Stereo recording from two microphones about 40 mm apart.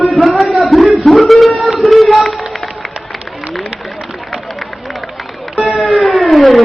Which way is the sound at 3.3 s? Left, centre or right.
Centre.